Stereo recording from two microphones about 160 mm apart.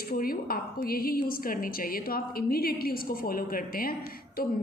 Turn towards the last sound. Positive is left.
turn(degrees=65)  # may be behind; listen again after turning